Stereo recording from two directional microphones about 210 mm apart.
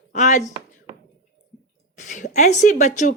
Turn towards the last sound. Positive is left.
turn(degrees=35)  # may be behind; listen again after turning